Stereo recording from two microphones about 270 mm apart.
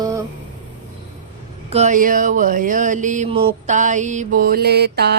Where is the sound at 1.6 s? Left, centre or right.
Right.